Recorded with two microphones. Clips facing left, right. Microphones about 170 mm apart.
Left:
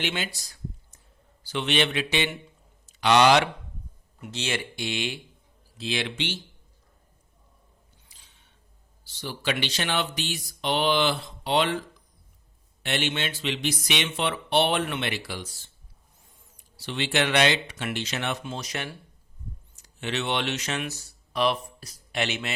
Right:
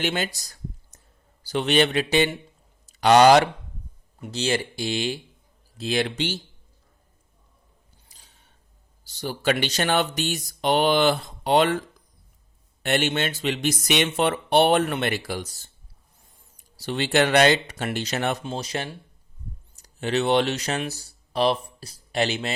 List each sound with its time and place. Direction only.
0.0 s a sound: 45° right (ahead or behind)
1.5 s speech: 40° right (ahead or behind)
8.0 s a sound: 40° right (ahead or behind)
9.0 s speech: 45° right (ahead or behind)
12.8 s speech: 45° right (ahead or behind)
16.7 s speech: 40° right (ahead or behind)